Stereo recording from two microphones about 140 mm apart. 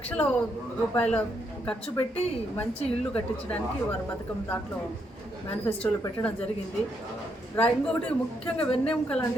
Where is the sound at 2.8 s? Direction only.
45° left (ahead or behind).